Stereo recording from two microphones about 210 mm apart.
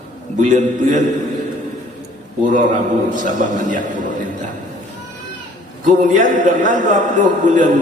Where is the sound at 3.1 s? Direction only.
35° right (ahead or behind).